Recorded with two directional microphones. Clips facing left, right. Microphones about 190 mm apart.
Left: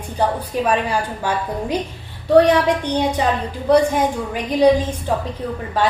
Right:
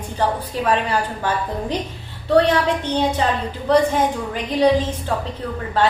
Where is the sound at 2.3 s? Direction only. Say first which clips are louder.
Left 3 dB; 10° left (ahead or behind).